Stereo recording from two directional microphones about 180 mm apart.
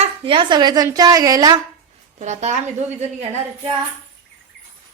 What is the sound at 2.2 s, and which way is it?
Speech, 40° right (ahead or behind).